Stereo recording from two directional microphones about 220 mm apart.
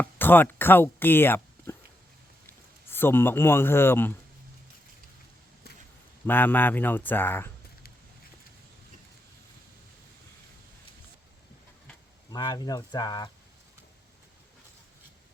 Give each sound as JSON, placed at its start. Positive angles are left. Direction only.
{"t": 0.0, "sound": "speech", "side_deg": 10}
{"t": 2.9, "sound": "speech", "side_deg": 10}
{"t": 6.2, "sound": "speech", "side_deg": 10}
{"t": 12.3, "sound": "speech", "side_deg": 20}